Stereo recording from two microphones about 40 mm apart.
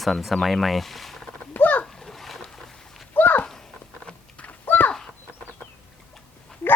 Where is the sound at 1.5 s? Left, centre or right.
Left.